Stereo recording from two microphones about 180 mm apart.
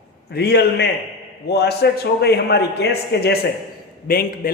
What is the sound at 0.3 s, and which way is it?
A man's voice, 65° left (ahead or behind).